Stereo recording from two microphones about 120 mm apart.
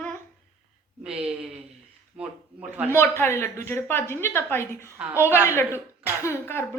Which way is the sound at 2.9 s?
20° left (ahead or behind).